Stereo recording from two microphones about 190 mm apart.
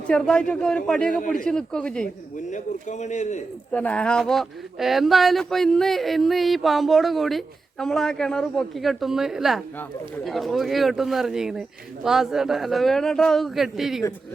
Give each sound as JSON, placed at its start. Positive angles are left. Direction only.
{"t": 0.1, "sound": "speech", "side_deg": 5}
{"t": 2.5, "sound": "a man's voice", "side_deg": 40}
{"t": 3.7, "sound": "speech", "side_deg": 5}